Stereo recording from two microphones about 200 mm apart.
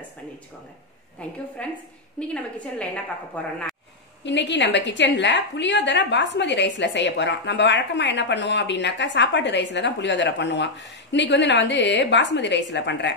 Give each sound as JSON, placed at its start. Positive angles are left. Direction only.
{"t": 1.2, "sound": "a woman's voice", "side_deg": 5}
{"t": 4.2, "sound": "a woman's voice", "side_deg": 60}